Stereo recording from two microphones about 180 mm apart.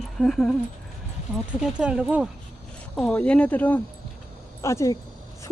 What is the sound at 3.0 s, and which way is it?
Speech, 5° left (ahead or behind).